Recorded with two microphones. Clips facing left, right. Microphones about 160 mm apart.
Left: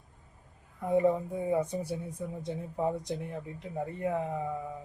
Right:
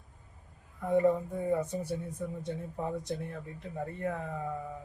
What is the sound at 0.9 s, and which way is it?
A man's voice, 10° left (ahead or behind).